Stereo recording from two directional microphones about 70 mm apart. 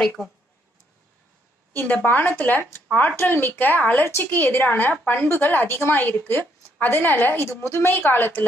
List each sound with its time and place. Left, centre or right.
0.2 s speech: centre
2.0 s a woman's voice: left